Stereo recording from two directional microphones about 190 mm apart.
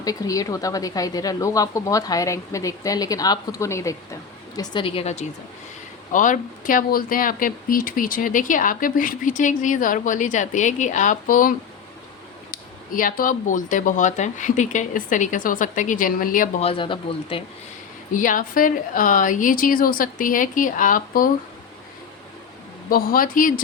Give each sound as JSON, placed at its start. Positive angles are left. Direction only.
{"t": 0.0, "sound": "speech", "side_deg": 20}
{"t": 6.1, "sound": "speech", "side_deg": 45}
{"t": 16.6, "sound": "speech", "side_deg": 30}
{"t": 18.1, "sound": "speech", "side_deg": 45}
{"t": 22.9, "sound": "speech", "side_deg": 50}